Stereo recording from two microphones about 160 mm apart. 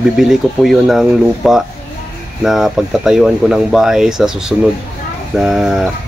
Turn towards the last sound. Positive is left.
turn(degrees=0)  # may be behind; listen again after turning